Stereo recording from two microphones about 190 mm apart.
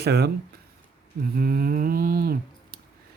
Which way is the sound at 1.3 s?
50° right (ahead or behind).